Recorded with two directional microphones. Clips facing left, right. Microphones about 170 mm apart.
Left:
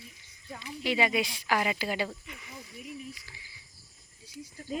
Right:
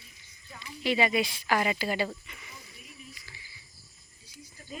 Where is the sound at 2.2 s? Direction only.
10° left (ahead or behind).